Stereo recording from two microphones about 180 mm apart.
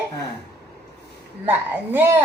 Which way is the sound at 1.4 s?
10° right (ahead or behind).